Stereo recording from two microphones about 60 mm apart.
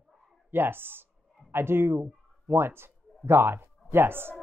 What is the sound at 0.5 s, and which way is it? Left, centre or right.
A man's voice, right.